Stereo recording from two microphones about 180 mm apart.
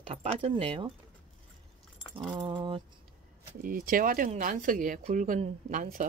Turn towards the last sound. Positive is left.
turn(degrees=-45)  # may be behind; listen again after turning